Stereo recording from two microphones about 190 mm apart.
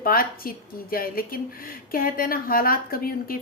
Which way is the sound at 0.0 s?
50° left (ahead or behind).